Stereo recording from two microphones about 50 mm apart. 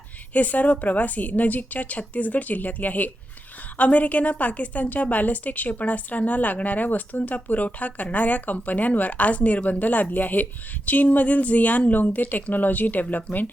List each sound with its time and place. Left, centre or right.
0.3 s a woman's voice: left